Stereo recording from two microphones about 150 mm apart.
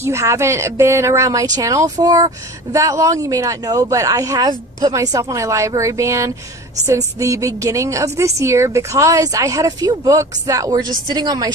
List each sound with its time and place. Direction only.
0.0 s a woman's voice: 20° right (ahead or behind)